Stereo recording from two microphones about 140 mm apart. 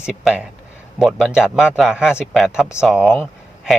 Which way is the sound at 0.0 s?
5° right (ahead or behind).